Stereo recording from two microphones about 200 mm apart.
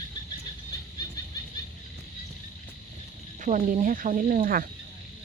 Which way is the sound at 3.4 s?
40° right (ahead or behind).